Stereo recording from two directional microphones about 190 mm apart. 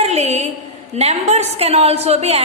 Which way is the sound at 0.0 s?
35° right (ahead or behind).